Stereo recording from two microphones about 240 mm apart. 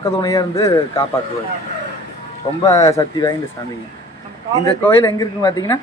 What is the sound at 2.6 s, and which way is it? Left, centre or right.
Speech, centre.